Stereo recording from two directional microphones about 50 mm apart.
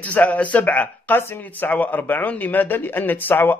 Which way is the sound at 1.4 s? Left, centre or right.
Left.